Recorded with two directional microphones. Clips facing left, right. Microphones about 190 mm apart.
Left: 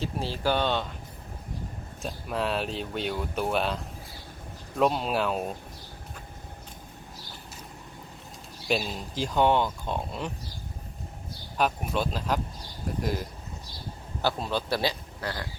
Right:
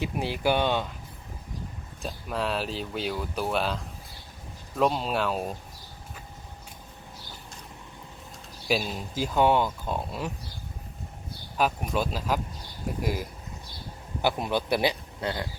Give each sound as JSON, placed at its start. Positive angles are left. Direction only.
{"t": 0.0, "sound": "speech", "side_deg": -15}
{"t": 2.0, "sound": "speech", "side_deg": 0}
{"t": 4.8, "sound": "speech", "side_deg": 0}
{"t": 8.9, "sound": "speech", "side_deg": -5}
{"t": 11.5, "sound": "speech", "side_deg": -5}